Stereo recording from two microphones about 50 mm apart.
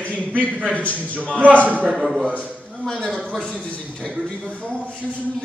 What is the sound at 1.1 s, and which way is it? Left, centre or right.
Speech, right.